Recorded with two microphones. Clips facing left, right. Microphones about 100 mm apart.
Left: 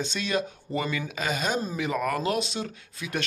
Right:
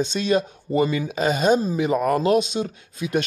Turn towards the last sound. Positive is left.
turn(degrees=-20)  # may be behind; listen again after turning